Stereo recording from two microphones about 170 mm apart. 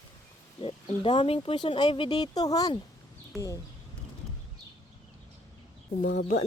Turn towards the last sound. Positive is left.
turn(degrees=50)  # may be behind; listen again after turning